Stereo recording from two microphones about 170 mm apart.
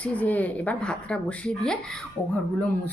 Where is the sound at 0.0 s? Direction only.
10° left (ahead or behind).